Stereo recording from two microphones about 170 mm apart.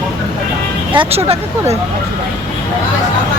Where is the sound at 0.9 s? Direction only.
35° right (ahead or behind).